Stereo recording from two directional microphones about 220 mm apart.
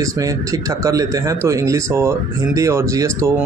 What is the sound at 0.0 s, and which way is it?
Speech, 15° right (ahead or behind).